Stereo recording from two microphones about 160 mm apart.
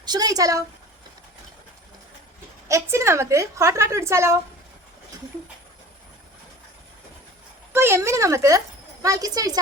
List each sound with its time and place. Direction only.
0.0 s speech: 25° right (ahead or behind)
2.6 s a woman's voice: 15° right (ahead or behind)
7.7 s speech: 15° right (ahead or behind)